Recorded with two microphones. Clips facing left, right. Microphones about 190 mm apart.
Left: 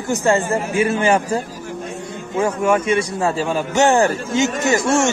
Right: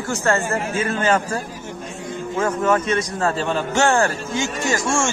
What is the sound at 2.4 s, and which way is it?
A man's voice, 10° left (ahead or behind).